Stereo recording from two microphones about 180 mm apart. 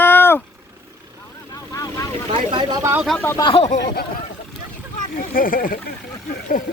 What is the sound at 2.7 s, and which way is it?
Speech, 15° right (ahead or behind).